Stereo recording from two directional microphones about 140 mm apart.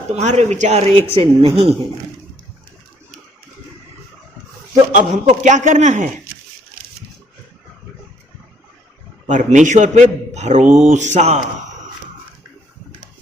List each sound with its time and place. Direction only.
0.1 s speech: 55° right (ahead or behind)
4.9 s a man's voice: 65° right (ahead or behind)
9.2 s a man's voice: 65° right (ahead or behind)